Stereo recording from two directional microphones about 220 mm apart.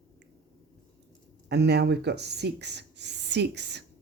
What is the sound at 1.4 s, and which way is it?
Speech, 50° right (ahead or behind).